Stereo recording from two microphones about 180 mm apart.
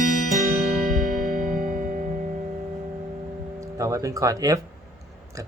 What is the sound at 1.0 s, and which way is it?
Music, 45° right (ahead or behind).